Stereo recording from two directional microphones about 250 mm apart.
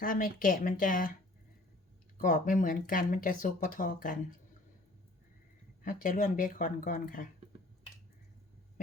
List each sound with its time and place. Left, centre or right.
0.0 s speech: left
2.1 s speech: left
5.8 s speech: left